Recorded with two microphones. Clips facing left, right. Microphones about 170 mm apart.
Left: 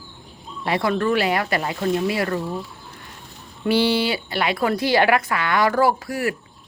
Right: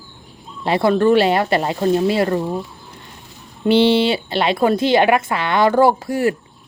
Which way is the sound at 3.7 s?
25° right (ahead or behind).